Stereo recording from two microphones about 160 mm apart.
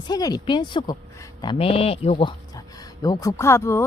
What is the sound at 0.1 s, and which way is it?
Speech, 25° left (ahead or behind).